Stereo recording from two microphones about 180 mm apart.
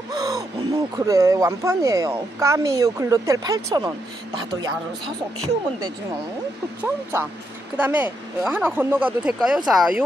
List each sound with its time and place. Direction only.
0.1 s gasp: 20° right (ahead or behind)
0.9 s speech: 20° right (ahead or behind)
6.8 s speech: 15° right (ahead or behind)